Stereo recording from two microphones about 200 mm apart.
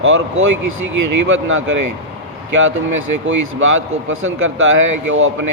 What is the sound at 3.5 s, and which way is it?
A man's voice, 75° right (ahead or behind).